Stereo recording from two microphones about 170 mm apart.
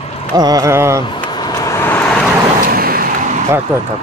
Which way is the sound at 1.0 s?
30° left (ahead or behind).